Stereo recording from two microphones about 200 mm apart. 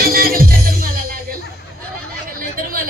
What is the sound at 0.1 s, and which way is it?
Music, 45° right (ahead or behind).